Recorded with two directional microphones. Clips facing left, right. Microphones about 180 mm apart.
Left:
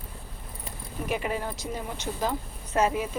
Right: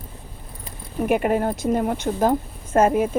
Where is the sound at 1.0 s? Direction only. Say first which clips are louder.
Right 10 dB; 55° right (ahead or behind).